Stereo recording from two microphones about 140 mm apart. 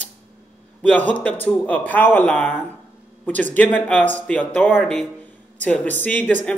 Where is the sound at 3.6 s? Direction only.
10° left (ahead or behind).